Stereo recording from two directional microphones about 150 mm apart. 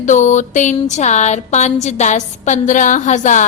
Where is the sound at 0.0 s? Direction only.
55° left (ahead or behind).